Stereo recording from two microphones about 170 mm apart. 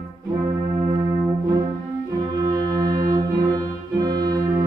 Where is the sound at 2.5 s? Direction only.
25° right (ahead or behind).